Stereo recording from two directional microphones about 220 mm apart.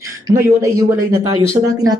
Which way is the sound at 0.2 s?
15° right (ahead or behind).